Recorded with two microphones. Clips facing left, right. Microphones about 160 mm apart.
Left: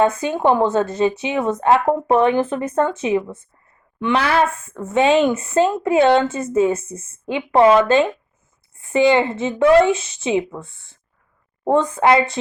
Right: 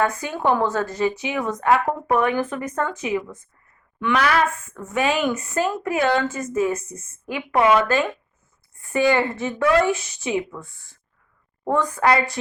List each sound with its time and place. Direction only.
0.0 s speech: 25° left (ahead or behind)